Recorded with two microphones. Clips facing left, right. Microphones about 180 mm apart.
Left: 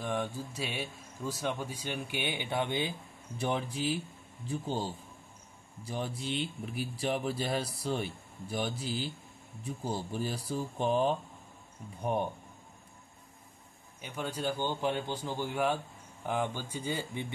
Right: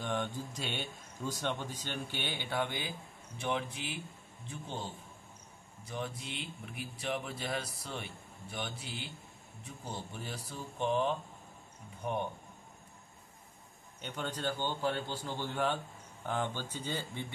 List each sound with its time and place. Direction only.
0.0 s speech: 5° left (ahead or behind); by 2.9 s 25° left (ahead or behind)
3.3 s speech: 35° left (ahead or behind)
14.0 s speech: 5° left (ahead or behind)